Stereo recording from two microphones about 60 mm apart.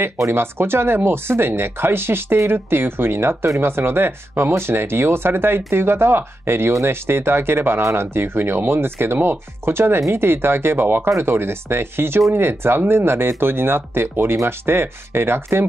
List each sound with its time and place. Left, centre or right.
0.3 s speech: right